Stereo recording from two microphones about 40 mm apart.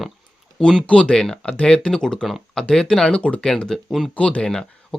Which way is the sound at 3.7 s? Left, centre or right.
Centre.